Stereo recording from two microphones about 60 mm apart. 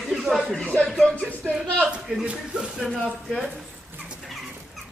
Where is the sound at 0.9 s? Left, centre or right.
Centre.